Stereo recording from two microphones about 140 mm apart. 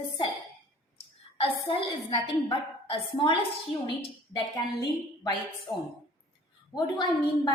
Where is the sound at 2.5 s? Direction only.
40° left (ahead or behind).